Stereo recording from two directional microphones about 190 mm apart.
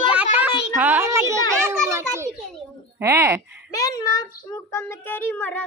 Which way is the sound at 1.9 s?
15° right (ahead or behind).